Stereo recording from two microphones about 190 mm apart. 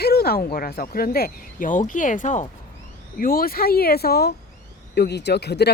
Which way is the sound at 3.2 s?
50° left (ahead or behind).